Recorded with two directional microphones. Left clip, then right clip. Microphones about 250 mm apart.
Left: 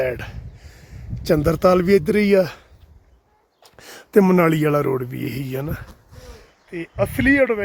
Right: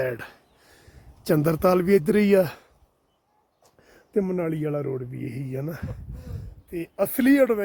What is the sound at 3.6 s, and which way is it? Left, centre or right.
Speech, centre.